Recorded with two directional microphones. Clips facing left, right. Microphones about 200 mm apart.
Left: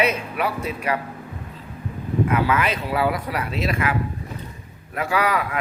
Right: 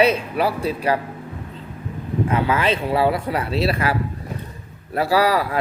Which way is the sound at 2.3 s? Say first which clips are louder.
Right 3 dB; 30° right (ahead or behind).